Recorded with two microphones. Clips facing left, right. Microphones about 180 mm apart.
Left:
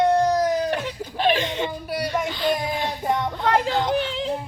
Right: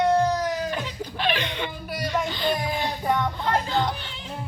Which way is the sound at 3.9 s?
90° left.